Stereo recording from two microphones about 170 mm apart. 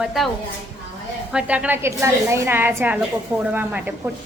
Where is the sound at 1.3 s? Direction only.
5° right (ahead or behind).